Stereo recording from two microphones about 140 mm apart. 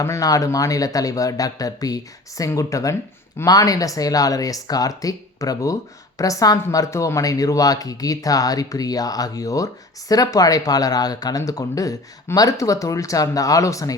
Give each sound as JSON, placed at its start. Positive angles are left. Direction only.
{"t": 0.0, "sound": "speech", "side_deg": 25}